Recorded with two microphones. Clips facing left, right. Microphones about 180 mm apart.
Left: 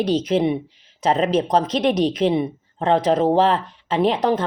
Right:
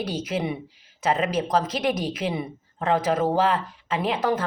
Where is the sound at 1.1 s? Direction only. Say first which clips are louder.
Left 5 dB; 30° left (ahead or behind).